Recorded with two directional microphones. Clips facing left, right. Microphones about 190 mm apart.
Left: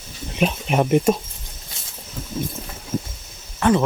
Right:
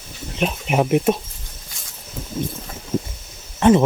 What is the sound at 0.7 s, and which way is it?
Speech, 5° right (ahead or behind).